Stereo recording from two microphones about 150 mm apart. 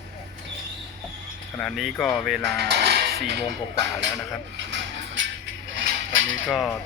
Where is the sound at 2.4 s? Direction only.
90° right.